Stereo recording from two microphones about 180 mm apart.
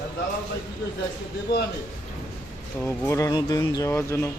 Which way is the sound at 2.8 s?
15° left (ahead or behind).